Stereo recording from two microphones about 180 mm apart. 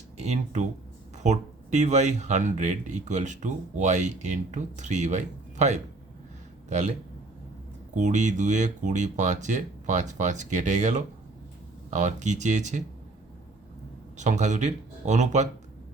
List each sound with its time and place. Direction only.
0.2 s speech: 40° right (ahead or behind)
7.9 s speech: 40° right (ahead or behind)
14.2 s speech: 40° right (ahead or behind)